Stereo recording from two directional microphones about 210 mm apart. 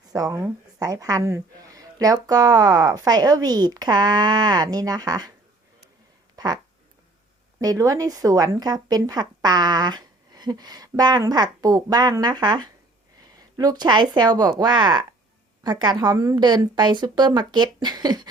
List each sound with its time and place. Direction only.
0.1 s a woman's voice: 15° right (ahead or behind)
6.3 s a sound: 20° right (ahead or behind)
7.6 s speech: 15° right (ahead or behind)